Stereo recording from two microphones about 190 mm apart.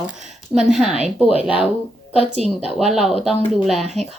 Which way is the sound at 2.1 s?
35° right (ahead or behind).